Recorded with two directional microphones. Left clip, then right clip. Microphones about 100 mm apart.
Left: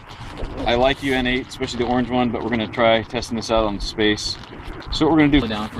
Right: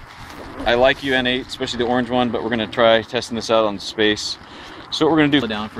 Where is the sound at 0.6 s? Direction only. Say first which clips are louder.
Right 3 dB; 5° right (ahead or behind).